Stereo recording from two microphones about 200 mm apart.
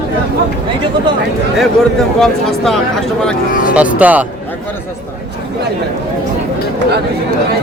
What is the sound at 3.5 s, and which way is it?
Speech, 45° left (ahead or behind).